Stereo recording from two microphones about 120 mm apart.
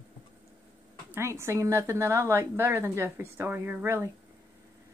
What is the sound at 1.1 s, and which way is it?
A woman's voice, 20° right (ahead or behind).